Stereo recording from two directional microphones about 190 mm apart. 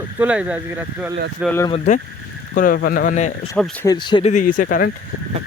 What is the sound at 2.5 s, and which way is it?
Speech, 45° left (ahead or behind).